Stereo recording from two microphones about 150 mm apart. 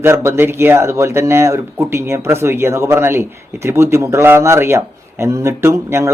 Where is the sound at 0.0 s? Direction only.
15° right (ahead or behind).